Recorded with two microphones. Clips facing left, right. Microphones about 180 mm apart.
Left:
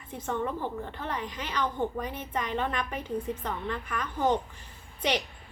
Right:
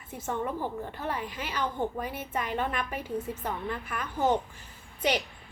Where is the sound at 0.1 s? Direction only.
10° right (ahead or behind).